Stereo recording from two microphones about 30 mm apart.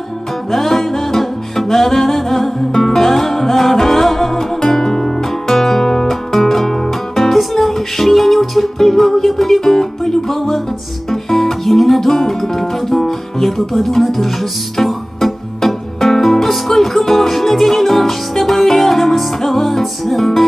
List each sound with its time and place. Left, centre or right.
0.5 s music: centre
4.8 s music: left
5.5 s music: centre